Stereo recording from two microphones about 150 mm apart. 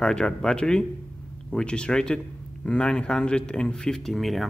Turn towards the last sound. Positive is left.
turn(degrees=0)  # may be behind; listen again after turning